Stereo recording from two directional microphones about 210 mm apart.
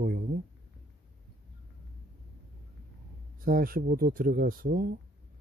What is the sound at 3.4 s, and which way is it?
Speech, 40° right (ahead or behind).